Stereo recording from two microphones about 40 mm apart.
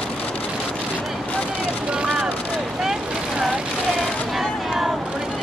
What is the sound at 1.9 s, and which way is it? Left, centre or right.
Vehicle, right.